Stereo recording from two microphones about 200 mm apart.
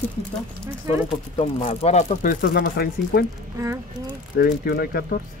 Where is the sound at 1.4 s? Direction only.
30° left (ahead or behind); by 3.2 s 50° left (ahead or behind).